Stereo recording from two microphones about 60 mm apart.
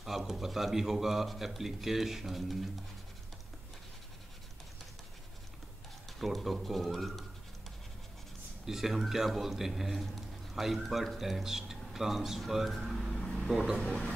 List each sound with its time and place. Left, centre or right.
0.0 s speech: centre
6.0 s speech: centre
8.6 s a man's voice: centre
13.7 s speech: centre